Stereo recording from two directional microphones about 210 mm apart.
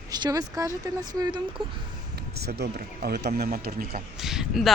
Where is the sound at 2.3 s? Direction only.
50° right (ahead or behind).